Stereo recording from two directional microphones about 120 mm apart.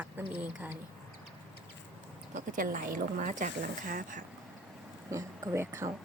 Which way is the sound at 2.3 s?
90° right.